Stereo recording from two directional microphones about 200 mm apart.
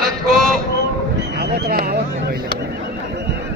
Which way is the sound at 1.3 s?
55° right (ahead or behind).